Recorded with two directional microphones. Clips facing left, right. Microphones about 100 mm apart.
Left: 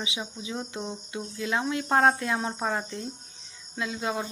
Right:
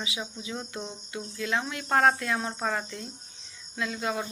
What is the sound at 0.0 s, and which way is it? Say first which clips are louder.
Speech: left 1 dB; 20° left (ahead or behind).